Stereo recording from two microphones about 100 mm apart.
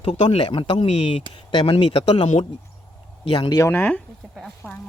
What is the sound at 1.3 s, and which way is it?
Speech, 50° left (ahead or behind).